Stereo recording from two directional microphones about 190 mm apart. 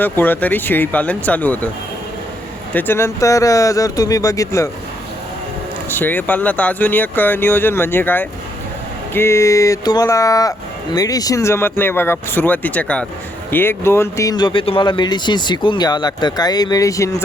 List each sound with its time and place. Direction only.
0.0 s speech: 10° left (ahead or behind)
2.7 s speech: 10° left (ahead or behind)
5.9 s speech: 10° left (ahead or behind)